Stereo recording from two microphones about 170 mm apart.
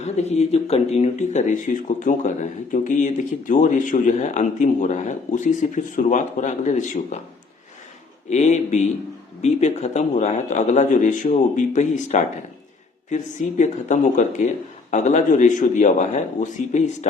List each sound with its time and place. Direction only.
0.0 s speech: 40° left (ahead or behind)
8.3 s speech: 45° left (ahead or behind)